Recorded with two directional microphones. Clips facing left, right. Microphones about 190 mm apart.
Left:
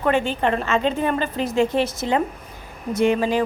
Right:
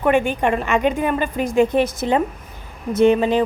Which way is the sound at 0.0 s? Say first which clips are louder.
Right 3 dB; 15° right (ahead or behind).